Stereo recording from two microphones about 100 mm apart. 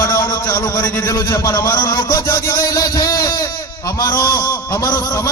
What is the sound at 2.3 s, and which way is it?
A man's voice, 30° left (ahead or behind).